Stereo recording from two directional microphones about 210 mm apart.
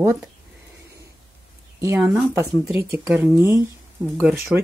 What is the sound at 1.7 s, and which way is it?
Speech, 15° right (ahead or behind).